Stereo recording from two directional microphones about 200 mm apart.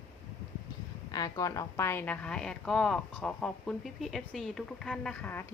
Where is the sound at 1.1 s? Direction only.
20° left (ahead or behind).